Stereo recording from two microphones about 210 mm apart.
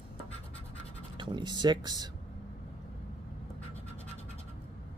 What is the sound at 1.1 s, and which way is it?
Speech, 20° right (ahead or behind).